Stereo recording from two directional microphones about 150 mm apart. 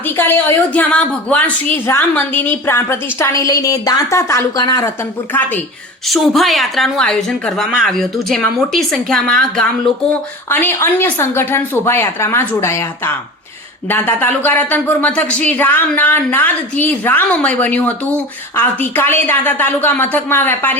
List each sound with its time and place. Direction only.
0.2 s a woman's voice: 15° left (ahead or behind)
6.1 s a woman's voice: centre (ahead or behind)
10.5 s a woman's voice: 15° left (ahead or behind)
13.8 s a woman's voice: 10° left (ahead or behind)